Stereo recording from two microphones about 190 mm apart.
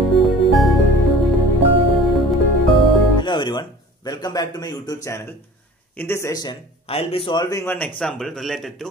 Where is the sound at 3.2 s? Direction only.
25° left (ahead or behind).